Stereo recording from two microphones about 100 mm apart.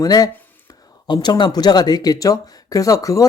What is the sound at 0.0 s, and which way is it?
Speech, 40° left (ahead or behind).